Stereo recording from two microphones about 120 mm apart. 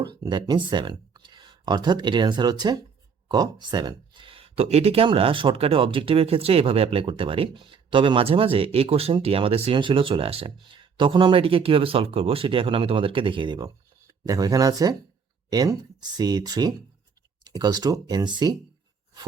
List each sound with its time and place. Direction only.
0.0 s speech: 35° right (ahead or behind); by 9.7 s 55° right (ahead or behind)
9.7 s speech: 45° right (ahead or behind)